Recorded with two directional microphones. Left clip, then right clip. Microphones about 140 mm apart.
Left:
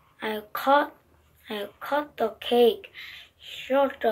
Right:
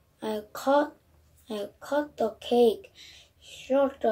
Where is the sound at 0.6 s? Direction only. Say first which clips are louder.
Left 3 dB; 15° right (ahead or behind).